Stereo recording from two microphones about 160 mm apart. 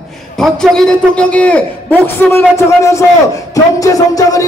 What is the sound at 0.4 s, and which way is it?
A man's voice, 5° left (ahead or behind).